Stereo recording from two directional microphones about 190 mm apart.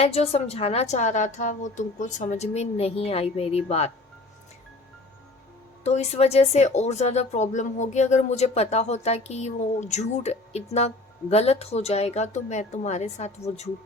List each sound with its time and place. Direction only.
0.0 s speech: 30° left (ahead or behind)
5.8 s speech: 35° left (ahead or behind)